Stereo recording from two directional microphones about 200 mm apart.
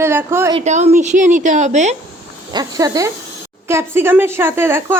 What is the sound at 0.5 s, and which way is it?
A woman's voice, 35° right (ahead or behind).